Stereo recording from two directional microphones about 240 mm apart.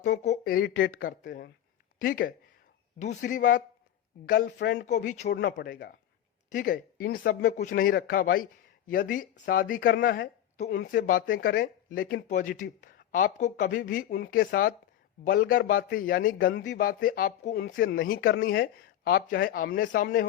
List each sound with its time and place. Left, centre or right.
0.2 s speech: left
5.3 s speech: left